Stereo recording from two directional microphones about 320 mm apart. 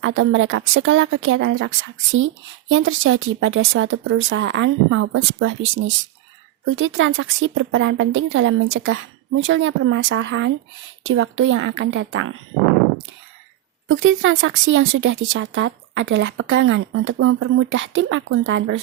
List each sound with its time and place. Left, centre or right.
0.0 s speech: right
13.8 s speech: right